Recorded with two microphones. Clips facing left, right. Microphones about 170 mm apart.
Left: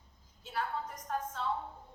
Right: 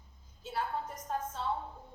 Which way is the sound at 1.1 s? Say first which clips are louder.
Left 1 dB; 25° right (ahead or behind).